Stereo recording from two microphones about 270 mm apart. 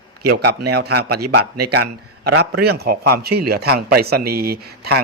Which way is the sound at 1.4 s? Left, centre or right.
Right.